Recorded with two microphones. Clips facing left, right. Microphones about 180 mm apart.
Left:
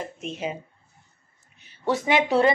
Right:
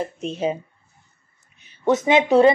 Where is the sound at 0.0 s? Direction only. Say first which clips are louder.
Right 7 dB; 35° right (ahead or behind).